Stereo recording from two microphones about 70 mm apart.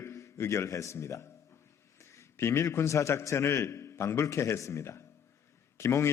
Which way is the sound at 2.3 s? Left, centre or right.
Left.